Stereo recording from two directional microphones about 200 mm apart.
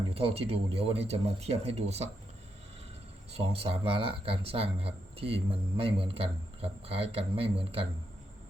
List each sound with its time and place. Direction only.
0.1 s a man's voice: 30° right (ahead or behind)
3.3 s a man's voice: 30° right (ahead or behind)